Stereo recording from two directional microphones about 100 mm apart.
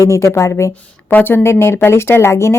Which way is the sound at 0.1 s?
30° left (ahead or behind).